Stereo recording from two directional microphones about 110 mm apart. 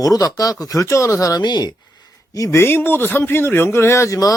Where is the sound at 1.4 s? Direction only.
40° left (ahead or behind).